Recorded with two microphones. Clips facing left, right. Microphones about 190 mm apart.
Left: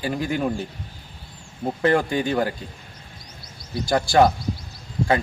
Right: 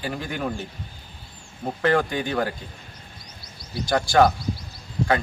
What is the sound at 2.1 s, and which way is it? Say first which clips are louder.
Speech: left 3 dB; 25° left (ahead or behind).